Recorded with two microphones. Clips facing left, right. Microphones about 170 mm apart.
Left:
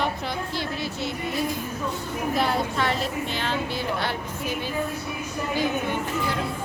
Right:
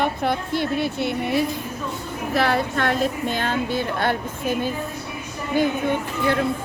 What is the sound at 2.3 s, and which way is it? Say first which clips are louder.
Speech: right 5 dB; 70° right (ahead or behind).